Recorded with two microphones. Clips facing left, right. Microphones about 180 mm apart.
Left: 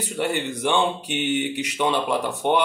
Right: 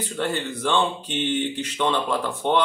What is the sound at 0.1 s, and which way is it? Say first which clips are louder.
Speech: left 2 dB; 15° left (ahead or behind).